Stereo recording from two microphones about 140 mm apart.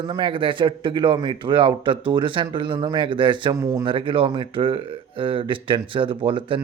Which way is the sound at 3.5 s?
25° right (ahead or behind).